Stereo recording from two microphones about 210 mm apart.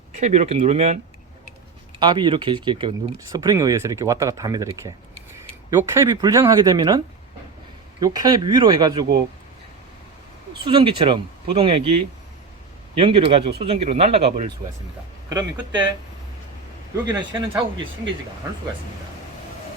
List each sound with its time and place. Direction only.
0.2 s speech: 30° right (ahead or behind)
2.0 s speech: 20° right (ahead or behind)
8.0 s speech: 20° right (ahead or behind)
10.5 s speech: 20° right (ahead or behind)
15.3 s speech: 20° right (ahead or behind)
17.1 s speech: 20° right (ahead or behind)